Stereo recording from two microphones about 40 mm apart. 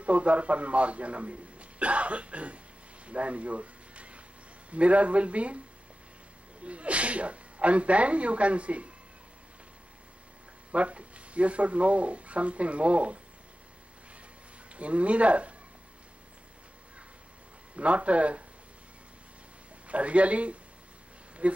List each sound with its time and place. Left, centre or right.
0.0 s a man's voice: right
3.1 s a sound: right
4.6 s a man's voice: right
6.6 s a man's voice: right
10.7 s a man's voice: right
14.8 s a man's voice: right
17.7 s a man's voice: right
19.9 s a man's voice: right